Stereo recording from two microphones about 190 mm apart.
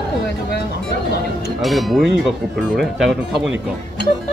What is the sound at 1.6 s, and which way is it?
Speech, centre (ahead or behind).